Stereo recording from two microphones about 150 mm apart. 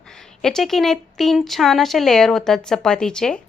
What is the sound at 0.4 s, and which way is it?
A woman's voice, centre (ahead or behind).